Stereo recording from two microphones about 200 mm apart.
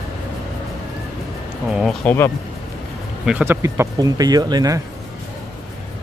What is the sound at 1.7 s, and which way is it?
Speech, centre (ahead or behind).